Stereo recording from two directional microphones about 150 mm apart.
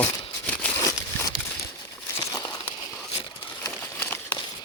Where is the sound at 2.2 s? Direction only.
25° left (ahead or behind).